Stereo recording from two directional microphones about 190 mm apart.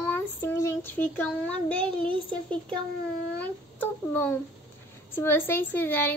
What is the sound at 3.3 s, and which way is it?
A woman's voice, 10° left (ahead or behind).